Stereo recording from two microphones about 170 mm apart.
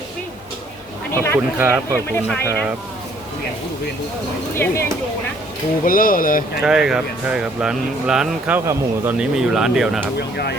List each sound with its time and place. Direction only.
1.1 s a sound: 15° left (ahead or behind)
1.5 s speech: 10° right (ahead or behind)
4.5 s speech: 15° left (ahead or behind)
5.8 s speech: 55° left (ahead or behind)
6.6 s speech: 5° right (ahead or behind)
10.2 s speech: 75° left (ahead or behind)